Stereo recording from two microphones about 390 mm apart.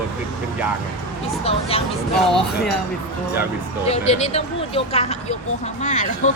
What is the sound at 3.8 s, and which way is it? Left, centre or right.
Speech, centre.